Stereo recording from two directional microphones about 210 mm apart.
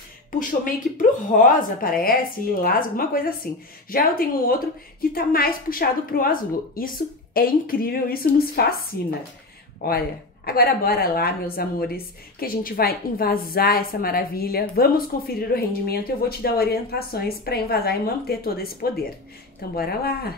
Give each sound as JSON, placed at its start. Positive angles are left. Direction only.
{"t": 0.4, "sound": "a woman's voice", "side_deg": 40}